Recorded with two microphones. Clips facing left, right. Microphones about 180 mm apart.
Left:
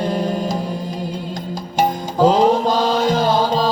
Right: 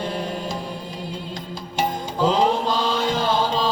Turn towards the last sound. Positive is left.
turn(degrees=40)  # may be behind; listen again after turning